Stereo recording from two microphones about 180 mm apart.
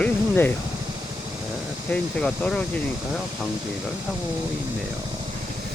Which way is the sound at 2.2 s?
5° left (ahead or behind).